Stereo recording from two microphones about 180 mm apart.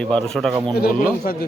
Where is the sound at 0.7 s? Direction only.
55° left (ahead or behind).